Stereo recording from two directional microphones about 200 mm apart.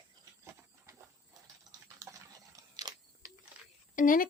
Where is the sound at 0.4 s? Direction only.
15° right (ahead or behind).